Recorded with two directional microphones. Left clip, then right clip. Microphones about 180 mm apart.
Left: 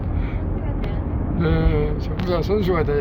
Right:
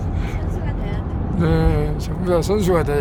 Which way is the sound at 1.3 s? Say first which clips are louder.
Right 2 dB; 25° right (ahead or behind).